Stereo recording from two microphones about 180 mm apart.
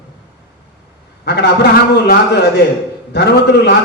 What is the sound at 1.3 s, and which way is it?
A man's voice, 65° left (ahead or behind).